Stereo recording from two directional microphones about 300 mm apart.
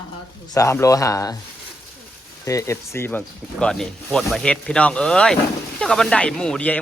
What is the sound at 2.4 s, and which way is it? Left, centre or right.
Speech, centre.